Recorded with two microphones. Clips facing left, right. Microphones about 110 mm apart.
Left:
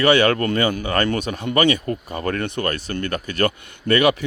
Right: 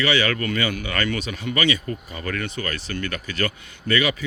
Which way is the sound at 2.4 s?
55° left (ahead or behind).